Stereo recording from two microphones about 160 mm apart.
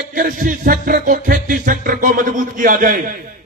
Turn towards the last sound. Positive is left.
turn(degrees=-60)  # may be behind; listen again after turning